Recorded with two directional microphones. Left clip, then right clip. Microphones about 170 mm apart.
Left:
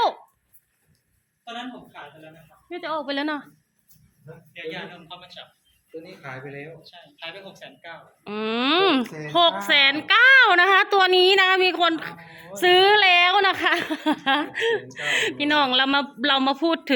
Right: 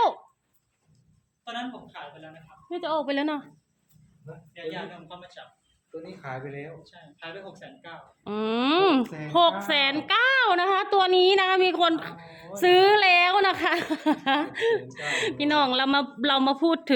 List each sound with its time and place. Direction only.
2.6 s speech: 15° right (ahead or behind)
3.2 s speech: centre (ahead or behind)
4.5 s a man's voice: 40° right (ahead or behind)
6.0 s speech: 20° right (ahead or behind)
6.8 s speech: 55° right (ahead or behind); by 7.9 s 70° right (ahead or behind)
8.2 s speech: 10° right (ahead or behind)